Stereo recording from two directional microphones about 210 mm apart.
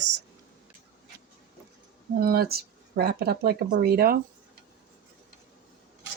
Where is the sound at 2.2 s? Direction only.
45° right (ahead or behind).